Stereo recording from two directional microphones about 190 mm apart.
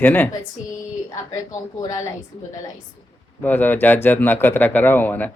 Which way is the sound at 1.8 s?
20° left (ahead or behind).